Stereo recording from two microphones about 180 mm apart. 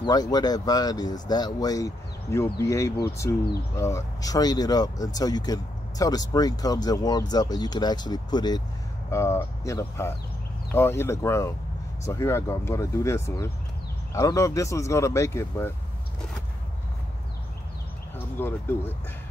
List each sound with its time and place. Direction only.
0.0 s speech: 20° left (ahead or behind)
18.1 s speech: 10° left (ahead or behind)